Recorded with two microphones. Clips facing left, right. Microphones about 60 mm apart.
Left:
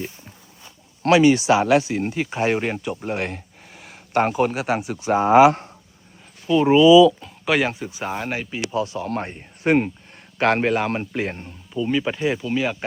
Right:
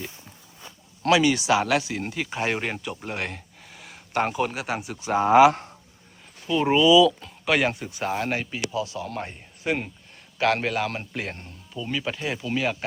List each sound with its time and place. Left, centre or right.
1.0 s speech: left
1.3 s speech: left
3.8 s speech: left
6.5 s speech: centre
6.8 s speech: left
7.2 s speech: centre
8.7 s speech: left; by 12.7 s centre